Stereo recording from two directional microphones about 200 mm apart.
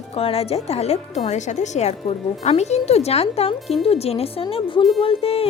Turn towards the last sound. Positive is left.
turn(degrees=30)  # may be behind; listen again after turning